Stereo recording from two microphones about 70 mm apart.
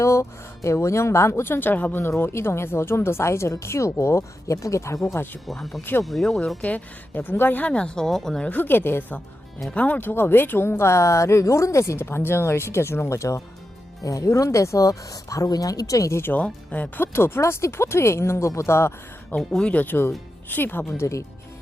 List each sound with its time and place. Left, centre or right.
0.0 s speech: left
5.2 s speech: left
5.5 s speech: centre
6.6 s a woman's voice: left
7.7 s speech: centre
8.4 s a woman's voice: left
16.2 s a woman's voice: left
17.0 s speech: left
19.4 s speech: centre; by 20.8 s left
21.0 s speech: left